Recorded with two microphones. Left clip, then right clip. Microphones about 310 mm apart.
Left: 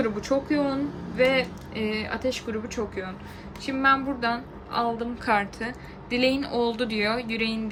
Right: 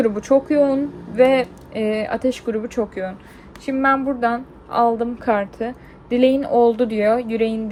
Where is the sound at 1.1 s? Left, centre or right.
Centre.